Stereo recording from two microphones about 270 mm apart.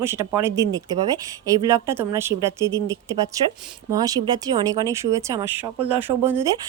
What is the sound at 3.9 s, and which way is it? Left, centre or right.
Speech, centre.